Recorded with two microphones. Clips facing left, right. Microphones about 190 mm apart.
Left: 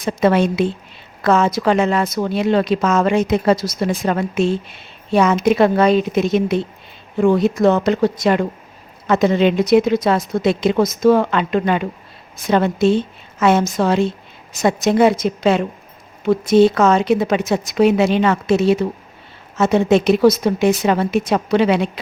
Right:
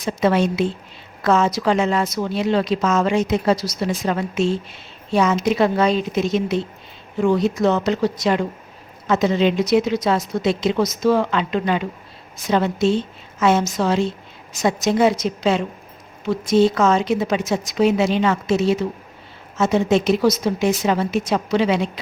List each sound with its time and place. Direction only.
0.0 s a woman's voice: 55° left (ahead or behind)